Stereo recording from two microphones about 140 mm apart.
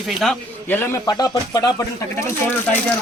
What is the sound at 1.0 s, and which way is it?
Speech, 25° left (ahead or behind).